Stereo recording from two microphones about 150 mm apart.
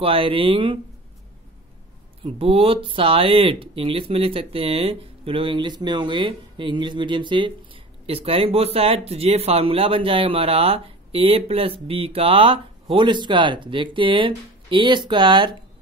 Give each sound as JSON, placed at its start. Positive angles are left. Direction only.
{"t": 0.0, "sound": "speech", "side_deg": -40}
{"t": 2.2, "sound": "speech", "side_deg": -40}